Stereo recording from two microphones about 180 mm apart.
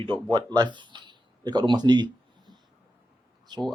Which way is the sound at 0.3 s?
25° right (ahead or behind).